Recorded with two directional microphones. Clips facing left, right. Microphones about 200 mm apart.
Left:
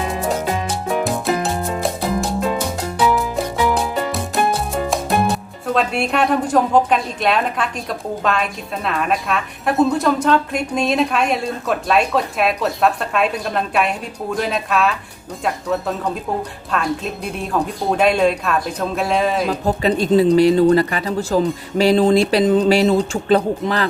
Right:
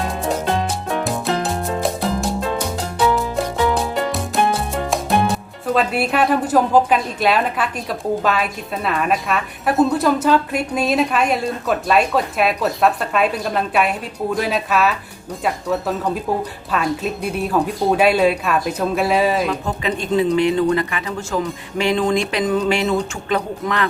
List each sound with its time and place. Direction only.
0.0 s music: centre (ahead or behind)
4.7 s speech: centre (ahead or behind)
19.5 s speech: 35° left (ahead or behind)